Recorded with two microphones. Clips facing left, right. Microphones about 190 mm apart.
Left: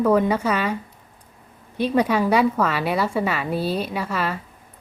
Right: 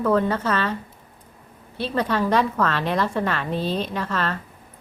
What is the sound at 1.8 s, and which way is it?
A woman's voice, 15° left (ahead or behind).